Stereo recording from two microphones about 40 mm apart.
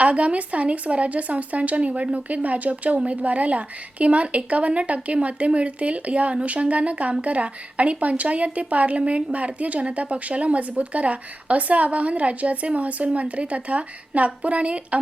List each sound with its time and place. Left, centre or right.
0.0 s speech: right